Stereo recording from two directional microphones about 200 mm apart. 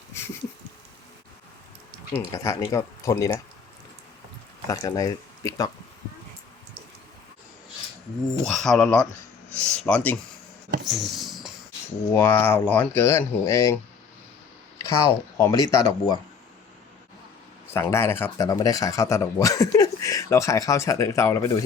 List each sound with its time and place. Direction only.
2.1 s speech: 15° left (ahead or behind)
4.7 s speech: 15° left (ahead or behind)
8.4 s speech: centre (ahead or behind)
10.8 s a sound: centre (ahead or behind)
12.1 s speech: 10° left (ahead or behind)
14.8 s speech: 15° left (ahead or behind)
17.7 s speech: 15° left (ahead or behind)